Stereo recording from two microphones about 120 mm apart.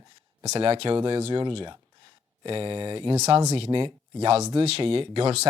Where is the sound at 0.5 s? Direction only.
50° right (ahead or behind).